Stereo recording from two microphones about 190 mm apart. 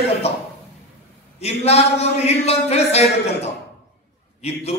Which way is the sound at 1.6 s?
35° left (ahead or behind).